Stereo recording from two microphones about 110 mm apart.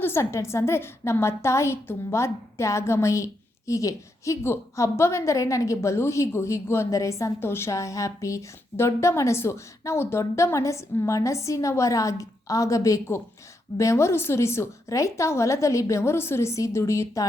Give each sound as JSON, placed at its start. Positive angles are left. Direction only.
{"t": 0.0, "sound": "a woman's voice", "side_deg": 25}